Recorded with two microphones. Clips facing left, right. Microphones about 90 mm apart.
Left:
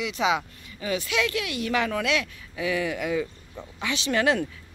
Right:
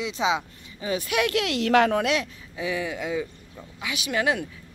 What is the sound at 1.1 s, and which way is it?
Speech, 60° right (ahead or behind).